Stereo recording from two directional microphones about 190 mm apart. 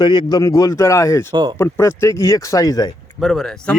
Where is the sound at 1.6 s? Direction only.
15° left (ahead or behind).